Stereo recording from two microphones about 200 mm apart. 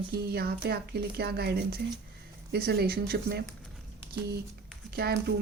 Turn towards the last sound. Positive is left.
turn(degrees=-50)  # may be behind; listen again after turning